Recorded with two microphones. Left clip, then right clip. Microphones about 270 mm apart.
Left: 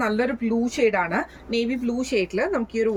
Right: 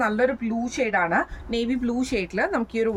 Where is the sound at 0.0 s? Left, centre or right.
Centre.